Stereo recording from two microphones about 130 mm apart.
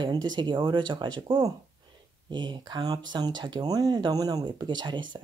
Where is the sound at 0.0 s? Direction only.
35° right (ahead or behind).